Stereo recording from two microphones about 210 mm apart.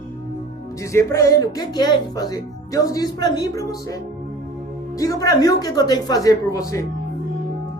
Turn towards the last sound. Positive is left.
turn(degrees=15)  # may be behind; listen again after turning